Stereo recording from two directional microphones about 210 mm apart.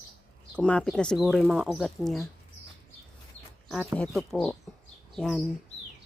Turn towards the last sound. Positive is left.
turn(degrees=0)  # may be behind; listen again after turning